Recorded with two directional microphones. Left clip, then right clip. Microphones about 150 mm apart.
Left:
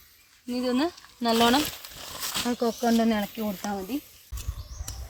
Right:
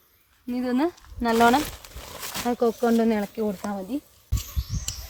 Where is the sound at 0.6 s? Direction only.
30° right (ahead or behind).